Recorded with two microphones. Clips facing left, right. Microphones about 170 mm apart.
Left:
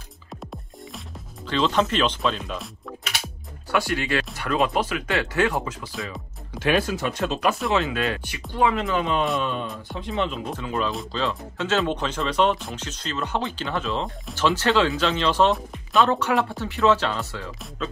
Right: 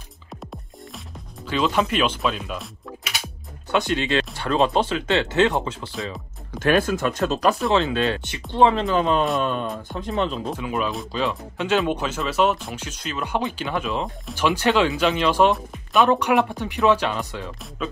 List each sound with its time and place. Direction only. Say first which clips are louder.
1.5 s speech: even; 10° right (ahead or behind)
3.7 s speech: right 2 dB; 20° right (ahead or behind)
6.6 s speech: right 3 dB; 50° right (ahead or behind)
7.7 s speech: right 3 dB; 30° right (ahead or behind)
10.6 s speech: left 1 dB; 10° right (ahead or behind)